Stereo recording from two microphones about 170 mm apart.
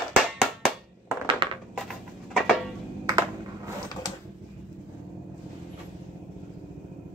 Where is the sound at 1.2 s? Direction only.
30° right (ahead or behind).